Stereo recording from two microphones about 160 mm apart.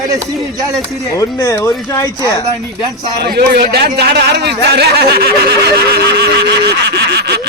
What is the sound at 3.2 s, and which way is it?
A man's voice, 70° right (ahead or behind).